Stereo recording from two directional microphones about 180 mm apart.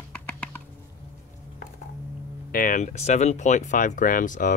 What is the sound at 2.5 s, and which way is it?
Speech, 50° left (ahead or behind).